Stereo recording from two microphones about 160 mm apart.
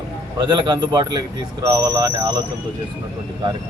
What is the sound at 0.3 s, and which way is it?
Speech, 30° right (ahead or behind).